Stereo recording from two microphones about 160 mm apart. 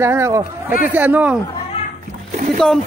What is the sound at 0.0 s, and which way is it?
Speech, 15° right (ahead or behind).